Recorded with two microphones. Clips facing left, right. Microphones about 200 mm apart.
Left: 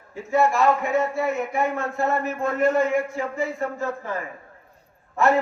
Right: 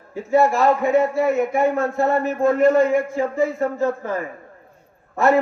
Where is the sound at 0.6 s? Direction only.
35° right (ahead or behind).